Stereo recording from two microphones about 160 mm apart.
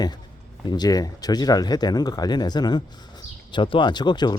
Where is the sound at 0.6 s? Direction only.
25° left (ahead or behind).